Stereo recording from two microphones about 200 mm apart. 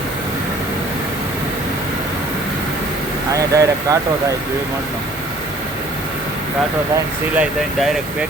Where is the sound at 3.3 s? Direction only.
15° right (ahead or behind).